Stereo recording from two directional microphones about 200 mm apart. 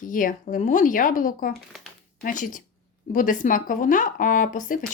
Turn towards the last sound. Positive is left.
turn(degrees=40)  # may be behind; listen again after turning